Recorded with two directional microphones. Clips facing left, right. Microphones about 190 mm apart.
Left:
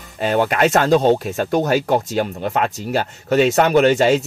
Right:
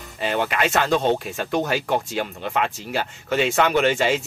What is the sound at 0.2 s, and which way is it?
Speech, 45° left (ahead or behind).